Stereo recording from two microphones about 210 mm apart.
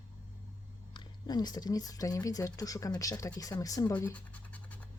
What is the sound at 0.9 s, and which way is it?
Speech, 20° left (ahead or behind).